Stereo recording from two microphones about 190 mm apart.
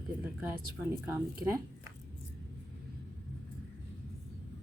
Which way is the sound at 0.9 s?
15° right (ahead or behind).